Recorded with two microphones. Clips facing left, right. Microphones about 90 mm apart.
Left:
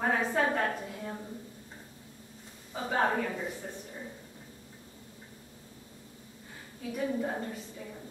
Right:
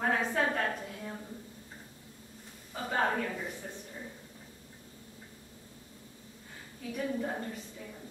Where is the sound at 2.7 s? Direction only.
10° left (ahead or behind).